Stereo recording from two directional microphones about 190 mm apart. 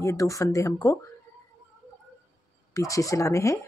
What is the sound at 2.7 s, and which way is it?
Speech, 15° left (ahead or behind).